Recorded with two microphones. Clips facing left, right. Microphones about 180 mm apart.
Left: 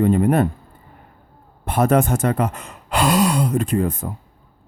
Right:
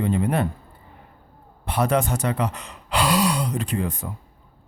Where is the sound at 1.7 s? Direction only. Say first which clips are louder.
Left 5 dB; 50° left (ahead or behind).